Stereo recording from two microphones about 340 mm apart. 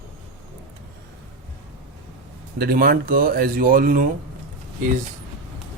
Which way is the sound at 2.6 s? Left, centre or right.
Right.